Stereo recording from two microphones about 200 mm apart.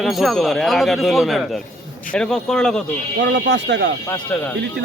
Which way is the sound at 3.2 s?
60° right (ahead or behind).